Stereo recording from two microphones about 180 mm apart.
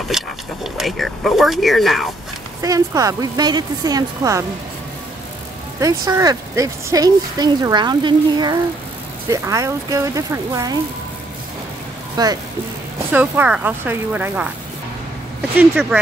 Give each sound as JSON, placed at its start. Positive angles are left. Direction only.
{"t": 0.1, "sound": "speech", "side_deg": 0}
{"t": 2.6, "sound": "speech", "side_deg": -20}
{"t": 5.8, "sound": "speech", "side_deg": -20}
{"t": 12.2, "sound": "speech", "side_deg": -20}
{"t": 13.1, "sound": "speech", "side_deg": -10}